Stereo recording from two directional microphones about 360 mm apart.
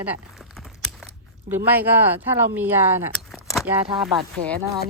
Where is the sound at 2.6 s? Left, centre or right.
Centre.